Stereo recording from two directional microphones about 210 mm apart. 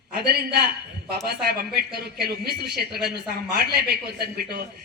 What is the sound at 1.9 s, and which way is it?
A man's voice, 50° right (ahead or behind).